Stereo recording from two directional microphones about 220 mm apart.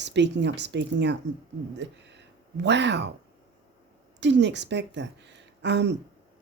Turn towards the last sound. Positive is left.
turn(degrees=-50)  # may be behind; listen again after turning